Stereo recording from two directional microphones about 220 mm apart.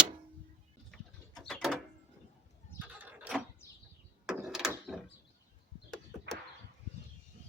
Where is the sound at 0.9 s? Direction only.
Centre (ahead or behind).